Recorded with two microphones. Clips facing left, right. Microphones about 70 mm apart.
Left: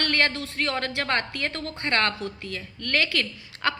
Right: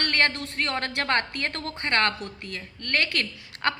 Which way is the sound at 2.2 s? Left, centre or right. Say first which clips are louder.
Left 3 dB; right.